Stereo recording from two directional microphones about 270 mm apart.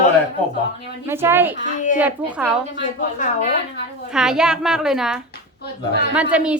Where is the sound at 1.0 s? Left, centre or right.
Centre.